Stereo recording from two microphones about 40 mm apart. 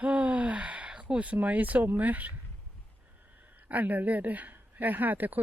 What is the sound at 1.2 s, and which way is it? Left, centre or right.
Speech, right.